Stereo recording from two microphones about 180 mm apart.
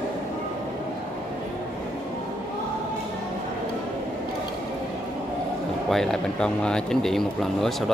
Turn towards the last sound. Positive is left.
turn(degrees=0)  # may be behind; listen again after turning